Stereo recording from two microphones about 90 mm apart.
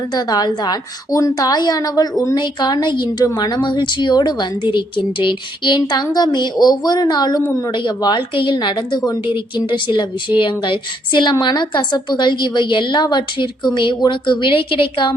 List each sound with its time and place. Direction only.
0.1 s a woman's voice: 45° left (ahead or behind); by 15.1 s 65° left (ahead or behind)